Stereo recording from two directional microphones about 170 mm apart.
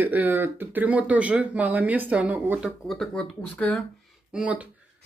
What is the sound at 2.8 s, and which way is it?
Speech, 5° left (ahead or behind).